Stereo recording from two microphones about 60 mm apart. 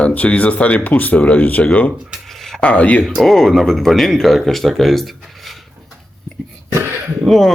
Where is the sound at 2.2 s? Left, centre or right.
Centre.